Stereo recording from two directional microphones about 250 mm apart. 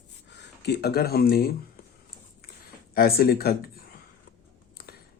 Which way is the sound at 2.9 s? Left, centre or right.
Left.